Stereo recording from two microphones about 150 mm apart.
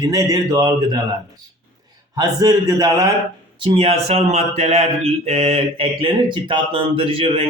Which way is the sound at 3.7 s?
40° right (ahead or behind).